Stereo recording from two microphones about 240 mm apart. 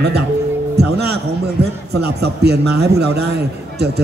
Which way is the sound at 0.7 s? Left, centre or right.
Right.